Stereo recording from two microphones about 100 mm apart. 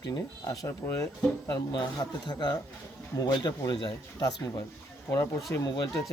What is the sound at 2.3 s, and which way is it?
Speech, 45° left (ahead or behind).